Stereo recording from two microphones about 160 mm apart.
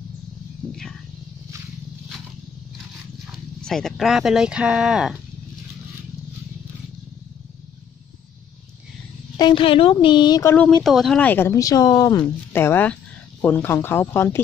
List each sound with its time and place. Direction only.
0.7 s a sound: 5° left (ahead or behind)
3.3 s speech: centre (ahead or behind)
9.4 s a woman's voice: 30° left (ahead or behind)
10.5 s speech: 5° left (ahead or behind)